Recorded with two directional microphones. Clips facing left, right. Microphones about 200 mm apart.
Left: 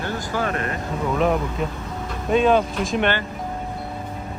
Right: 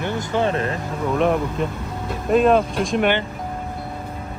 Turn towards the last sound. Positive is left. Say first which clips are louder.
# right 2 dB
turn(degrees=0)  # may be behind; listen again after turning